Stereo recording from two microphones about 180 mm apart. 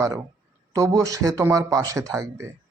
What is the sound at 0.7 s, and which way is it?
A man's voice, 15° right (ahead or behind).